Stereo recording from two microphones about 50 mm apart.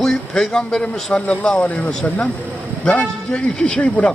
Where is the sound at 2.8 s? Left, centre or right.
Left.